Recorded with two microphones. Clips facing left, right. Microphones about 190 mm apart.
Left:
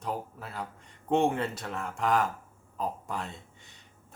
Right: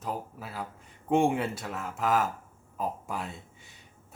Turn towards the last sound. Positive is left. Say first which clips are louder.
# right 1 dB
turn(degrees=-5)  # may be behind; listen again after turning